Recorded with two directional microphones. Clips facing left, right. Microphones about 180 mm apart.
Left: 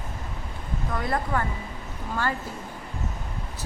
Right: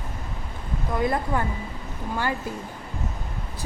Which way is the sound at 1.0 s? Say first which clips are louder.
Right 2 dB; 15° right (ahead or behind).